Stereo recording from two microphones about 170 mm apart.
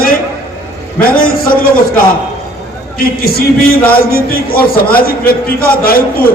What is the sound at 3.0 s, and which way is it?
A man's voice, 60° left (ahead or behind).